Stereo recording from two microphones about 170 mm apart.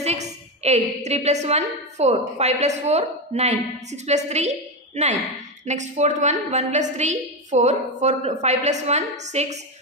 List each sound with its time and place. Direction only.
0.0 s a woman's voice: 40° right (ahead or behind)